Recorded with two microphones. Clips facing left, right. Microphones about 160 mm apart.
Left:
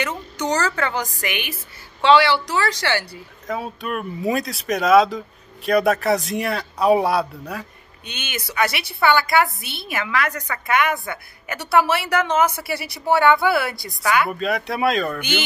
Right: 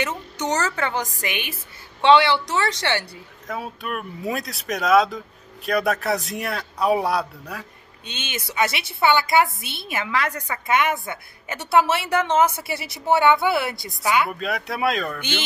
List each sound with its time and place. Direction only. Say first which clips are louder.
0.0 s a sound: left 1 dB; 20° right (ahead or behind)
0.7 s a woman's voice: left 1 dB; 20° right (ahead or behind)
3.4 s speech: left 3 dB; centre (ahead or behind)
8.0 s a woman's voice: left 1 dB; 25° right (ahead or behind)
14.4 s speech: left 3 dB; centre (ahead or behind)